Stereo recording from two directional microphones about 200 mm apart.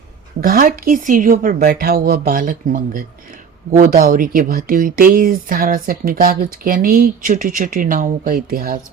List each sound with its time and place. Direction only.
0.4 s speech: 45° right (ahead or behind)